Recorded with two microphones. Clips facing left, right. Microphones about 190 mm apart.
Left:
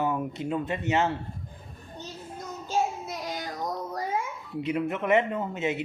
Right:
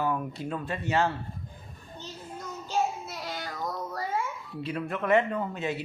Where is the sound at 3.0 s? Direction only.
15° left (ahead or behind).